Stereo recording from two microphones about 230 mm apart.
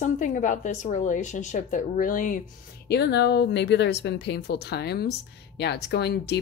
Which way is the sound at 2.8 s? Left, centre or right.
Left.